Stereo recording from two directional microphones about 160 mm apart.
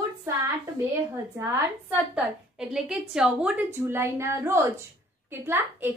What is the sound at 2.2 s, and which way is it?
A woman's voice, 5° right (ahead or behind).